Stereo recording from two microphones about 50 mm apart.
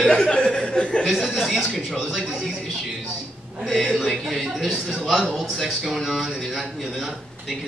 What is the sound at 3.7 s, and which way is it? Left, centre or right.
Speech, centre.